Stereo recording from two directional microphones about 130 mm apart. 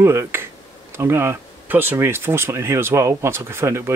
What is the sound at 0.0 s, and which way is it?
Speech, 20° right (ahead or behind).